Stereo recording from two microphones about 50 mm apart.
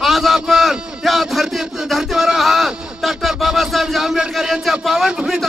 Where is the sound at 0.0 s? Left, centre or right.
Centre.